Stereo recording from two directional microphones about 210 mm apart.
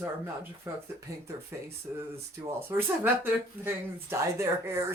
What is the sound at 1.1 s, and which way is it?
Speech, 15° right (ahead or behind).